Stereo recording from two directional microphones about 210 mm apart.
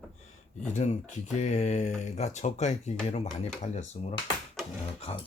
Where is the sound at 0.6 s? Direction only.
35° left (ahead or behind).